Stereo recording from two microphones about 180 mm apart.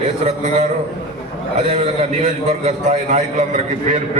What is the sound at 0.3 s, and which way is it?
A man's voice, 40° right (ahead or behind).